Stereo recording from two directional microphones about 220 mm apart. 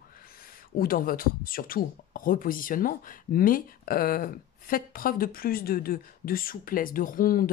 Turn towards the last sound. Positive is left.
turn(degrees=40)  # may be behind; listen again after turning